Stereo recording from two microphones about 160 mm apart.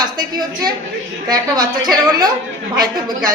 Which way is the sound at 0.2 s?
25° right (ahead or behind).